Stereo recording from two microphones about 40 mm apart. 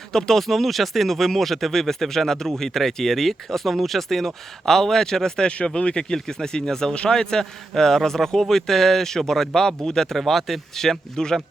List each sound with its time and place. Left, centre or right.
0.1 s speech: centre
6.9 s speech: left
7.2 s speech: centre